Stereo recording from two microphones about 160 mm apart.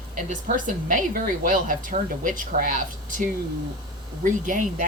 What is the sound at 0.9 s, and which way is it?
Speech, 55° right (ahead or behind).